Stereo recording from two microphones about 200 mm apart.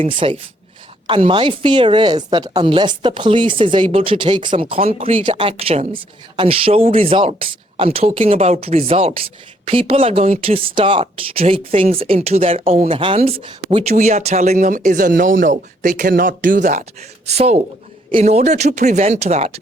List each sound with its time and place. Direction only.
0.0 s a woman's voice: 25° right (ahead or behind)